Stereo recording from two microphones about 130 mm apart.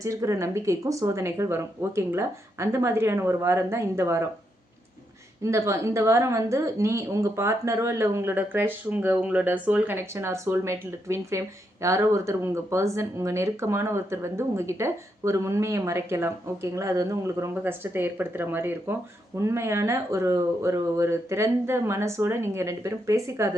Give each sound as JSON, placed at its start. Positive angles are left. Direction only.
{"t": 0.0, "sound": "a woman's voice", "side_deg": -25}
{"t": 5.4, "sound": "a woman's voice", "side_deg": -20}